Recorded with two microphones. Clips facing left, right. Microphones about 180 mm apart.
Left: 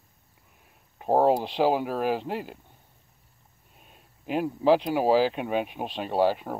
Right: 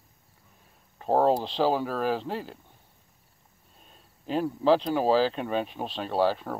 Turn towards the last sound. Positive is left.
turn(degrees=10)  # may be behind; listen again after turning